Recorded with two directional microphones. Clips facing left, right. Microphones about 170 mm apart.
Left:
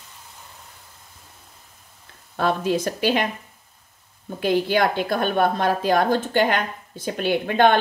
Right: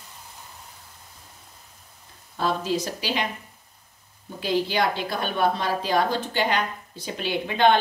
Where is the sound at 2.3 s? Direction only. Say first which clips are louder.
Left 4 dB; 60° left (ahead or behind).